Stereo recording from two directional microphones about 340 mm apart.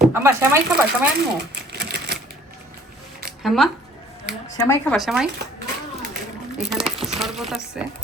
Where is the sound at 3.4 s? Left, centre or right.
Centre.